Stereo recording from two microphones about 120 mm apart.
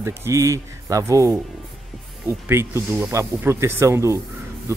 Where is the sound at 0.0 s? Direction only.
20° right (ahead or behind).